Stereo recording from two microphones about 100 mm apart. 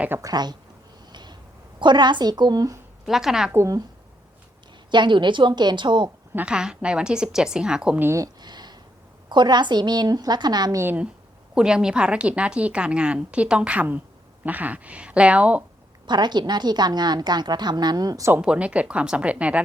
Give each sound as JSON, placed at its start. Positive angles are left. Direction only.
{"t": 0.2, "sound": "speech", "side_deg": -40}
{"t": 1.1, "sound": "a sound", "side_deg": -45}
{"t": 1.8, "sound": "a woman's voice", "side_deg": -50}
{"t": 3.1, "sound": "a woman's voice", "side_deg": -5}
{"t": 3.5, "sound": "speech", "side_deg": -30}
{"t": 4.9, "sound": "a woman's voice", "side_deg": -50}
{"t": 6.3, "sound": "a woman's voice", "side_deg": -10}
{"t": 7.9, "sound": "a woman's voice", "side_deg": -25}
{"t": 8.2, "sound": "a sound", "side_deg": -45}
{"t": 9.3, "sound": "a woman's voice", "side_deg": -50}
{"t": 10.8, "sound": "a woman's voice", "side_deg": -20}
{"t": 11.5, "sound": "a woman's voice", "side_deg": -10}
{"t": 16.0, "sound": "a woman's voice", "side_deg": -45}
{"t": 18.4, "sound": "a woman's voice", "side_deg": -10}